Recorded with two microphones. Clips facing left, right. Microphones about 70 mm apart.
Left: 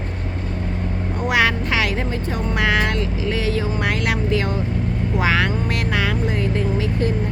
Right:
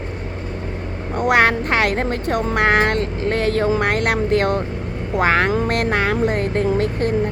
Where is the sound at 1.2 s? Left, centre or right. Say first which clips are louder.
Right 4 dB; right.